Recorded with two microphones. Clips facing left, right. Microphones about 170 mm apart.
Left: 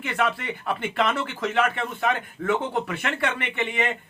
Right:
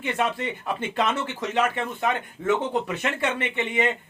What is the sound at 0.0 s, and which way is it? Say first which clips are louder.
A man's voice: even; 25° right (ahead or behind).